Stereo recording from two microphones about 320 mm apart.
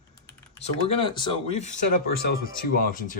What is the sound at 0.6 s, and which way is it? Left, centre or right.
Speech, centre.